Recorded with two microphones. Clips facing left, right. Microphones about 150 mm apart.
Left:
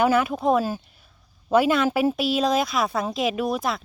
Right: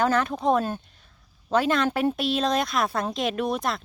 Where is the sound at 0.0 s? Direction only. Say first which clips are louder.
Left 3 dB; 10° left (ahead or behind).